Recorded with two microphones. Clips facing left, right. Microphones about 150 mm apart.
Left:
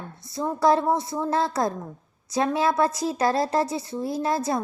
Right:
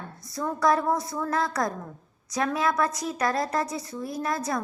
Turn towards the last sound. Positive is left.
turn(degrees=30)  # may be behind; listen again after turning